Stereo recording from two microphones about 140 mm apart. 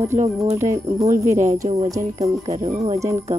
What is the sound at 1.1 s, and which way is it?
Speech, 55° right (ahead or behind).